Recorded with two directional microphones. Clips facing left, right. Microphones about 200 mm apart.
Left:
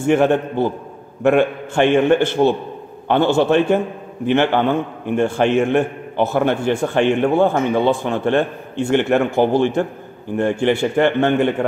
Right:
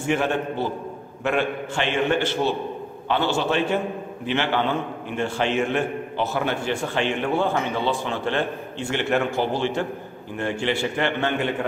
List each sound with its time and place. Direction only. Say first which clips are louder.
0.0 s a man's voice: left 8 dB; 50° left (ahead or behind)